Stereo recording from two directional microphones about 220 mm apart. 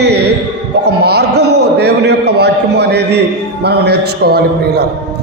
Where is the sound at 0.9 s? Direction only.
50° right (ahead or behind).